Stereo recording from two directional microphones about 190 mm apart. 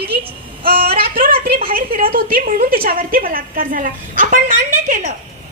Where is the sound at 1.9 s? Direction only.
50° right (ahead or behind).